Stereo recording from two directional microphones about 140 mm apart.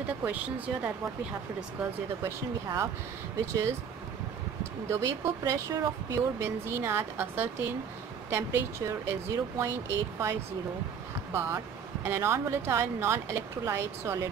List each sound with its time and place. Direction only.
0.2 s speech: 10° right (ahead or behind)
2.2 s speech: 20° right (ahead or behind)
4.8 s speech: 20° right (ahead or behind)
11.3 s speech: 20° right (ahead or behind)